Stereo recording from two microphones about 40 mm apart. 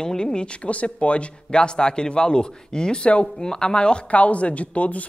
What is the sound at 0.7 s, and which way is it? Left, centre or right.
Speech, left.